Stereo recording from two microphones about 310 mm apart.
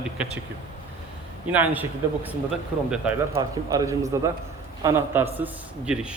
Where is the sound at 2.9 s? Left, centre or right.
Centre.